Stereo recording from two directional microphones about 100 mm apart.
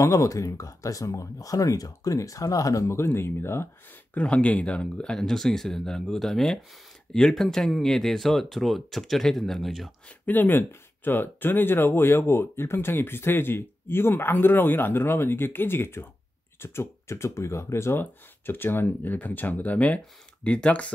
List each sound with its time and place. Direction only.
0.0 s speech: 35° left (ahead or behind)
4.1 s speech: 10° left (ahead or behind)
10.0 s speech: 15° left (ahead or behind)